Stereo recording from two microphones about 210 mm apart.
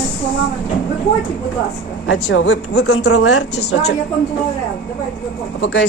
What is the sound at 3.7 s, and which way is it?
Speech, 55° left (ahead or behind).